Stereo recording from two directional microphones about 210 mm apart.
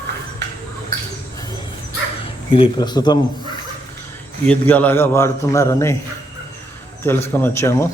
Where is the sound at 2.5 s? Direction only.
25° left (ahead or behind).